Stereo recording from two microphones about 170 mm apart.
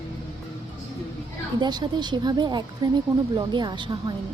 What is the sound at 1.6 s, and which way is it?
Speech, 25° right (ahead or behind).